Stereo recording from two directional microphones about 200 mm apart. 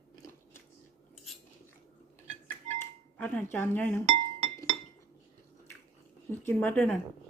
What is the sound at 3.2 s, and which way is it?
Speech, 10° left (ahead or behind).